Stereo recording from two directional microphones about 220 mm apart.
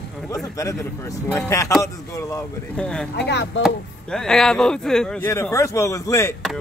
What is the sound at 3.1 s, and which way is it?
Speech, 50° left (ahead or behind).